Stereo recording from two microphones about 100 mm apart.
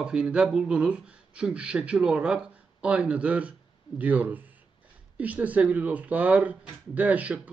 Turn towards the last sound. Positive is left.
turn(degrees=-15)  # may be behind; listen again after turning